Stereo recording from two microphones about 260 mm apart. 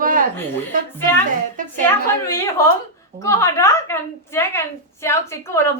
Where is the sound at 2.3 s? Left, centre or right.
Centre.